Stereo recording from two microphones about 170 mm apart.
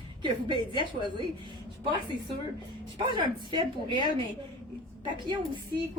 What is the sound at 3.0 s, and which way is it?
A woman's voice, 25° right (ahead or behind).